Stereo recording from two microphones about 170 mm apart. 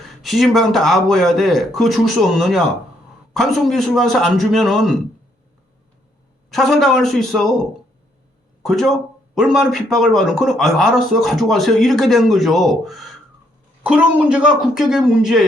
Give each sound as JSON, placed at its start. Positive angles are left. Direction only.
{"t": 0.0, "sound": "speech", "side_deg": 0}
{"t": 6.5, "sound": "speech", "side_deg": 0}
{"t": 8.6, "sound": "speech", "side_deg": 0}